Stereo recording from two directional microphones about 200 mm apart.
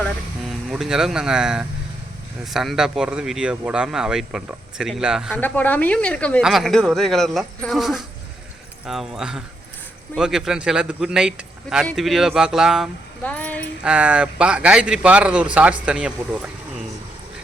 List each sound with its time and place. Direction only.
0.7 s speech: 5° right (ahead or behind)
5.3 s speech: 10° left (ahead or behind)
13.8 s speech: 5° right (ahead or behind)